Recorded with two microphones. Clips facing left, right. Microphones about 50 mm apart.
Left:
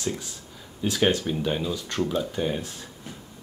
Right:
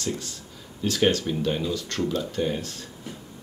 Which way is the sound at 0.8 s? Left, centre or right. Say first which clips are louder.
Right 1 dB; centre.